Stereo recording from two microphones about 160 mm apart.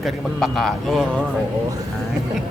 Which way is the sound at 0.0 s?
Centre (ahead or behind).